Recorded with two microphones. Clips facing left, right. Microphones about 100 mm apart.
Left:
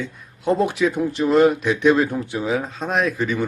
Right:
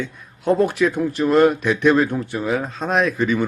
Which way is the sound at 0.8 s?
15° left (ahead or behind).